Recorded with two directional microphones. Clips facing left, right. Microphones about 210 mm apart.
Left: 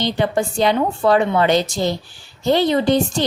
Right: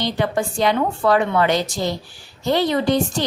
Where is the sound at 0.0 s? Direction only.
25° left (ahead or behind).